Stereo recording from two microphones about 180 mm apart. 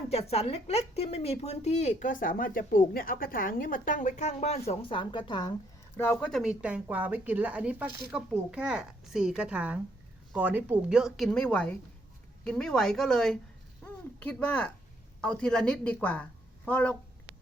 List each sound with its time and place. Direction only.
0.1 s a woman's voice: 35° left (ahead or behind)
6.0 s speech: 10° left (ahead or behind)